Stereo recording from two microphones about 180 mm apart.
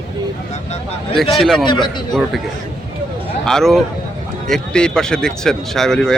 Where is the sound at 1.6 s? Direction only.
25° left (ahead or behind).